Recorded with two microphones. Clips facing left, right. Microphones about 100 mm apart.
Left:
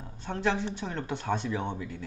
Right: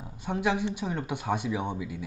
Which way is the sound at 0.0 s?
10° right (ahead or behind).